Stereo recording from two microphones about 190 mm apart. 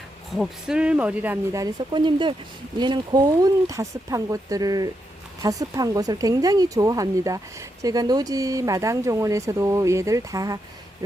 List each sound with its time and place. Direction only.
0.3 s speech: 5° right (ahead or behind)